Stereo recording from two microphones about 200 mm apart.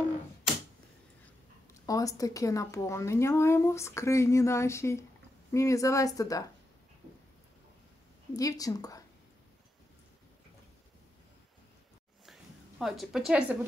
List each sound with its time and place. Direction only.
1.7 s a woman's voice: 15° left (ahead or behind)
8.3 s a woman's voice: 15° left (ahead or behind)
12.3 s a sound: centre (ahead or behind)